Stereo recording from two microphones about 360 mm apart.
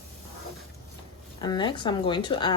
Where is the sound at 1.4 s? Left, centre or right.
Centre.